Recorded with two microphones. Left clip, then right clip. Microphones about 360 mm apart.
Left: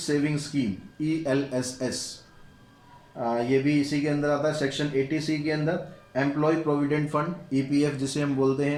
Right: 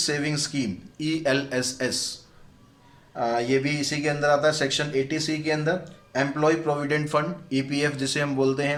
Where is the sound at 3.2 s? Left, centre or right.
Right.